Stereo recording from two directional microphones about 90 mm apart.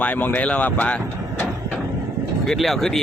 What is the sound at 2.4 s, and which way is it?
Speech, centre (ahead or behind).